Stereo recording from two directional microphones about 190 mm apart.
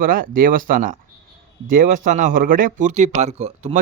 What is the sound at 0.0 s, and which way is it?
Speech, 45° right (ahead or behind).